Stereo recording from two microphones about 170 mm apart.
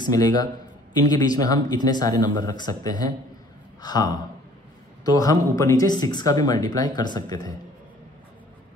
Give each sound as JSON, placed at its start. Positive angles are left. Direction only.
{"t": 0.0, "sound": "speech", "side_deg": 20}